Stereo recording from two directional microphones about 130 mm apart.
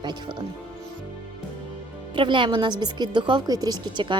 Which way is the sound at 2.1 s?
40° right (ahead or behind).